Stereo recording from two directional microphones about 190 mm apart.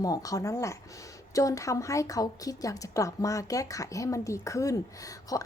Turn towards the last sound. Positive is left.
turn(degrees=20)  # may be behind; listen again after turning